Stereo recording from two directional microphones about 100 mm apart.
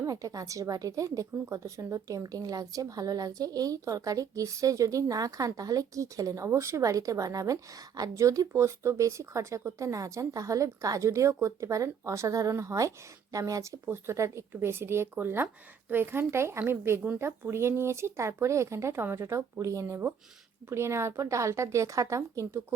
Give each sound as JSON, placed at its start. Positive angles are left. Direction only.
{"t": 0.0, "sound": "a woman's voice", "side_deg": -35}